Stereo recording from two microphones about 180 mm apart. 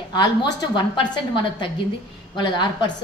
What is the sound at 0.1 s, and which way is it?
Speech, 25° left (ahead or behind).